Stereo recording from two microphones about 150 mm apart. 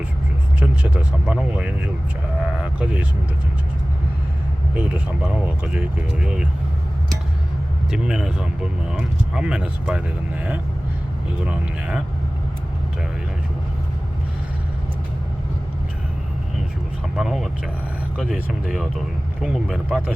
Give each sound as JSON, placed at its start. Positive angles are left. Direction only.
{"t": 0.6, "sound": "speech", "side_deg": -10}
{"t": 4.7, "sound": "speech", "side_deg": -10}
{"t": 7.9, "sound": "speech", "side_deg": -5}
{"t": 11.4, "sound": "speech", "side_deg": -5}
{"t": 17.2, "sound": "speech", "side_deg": -5}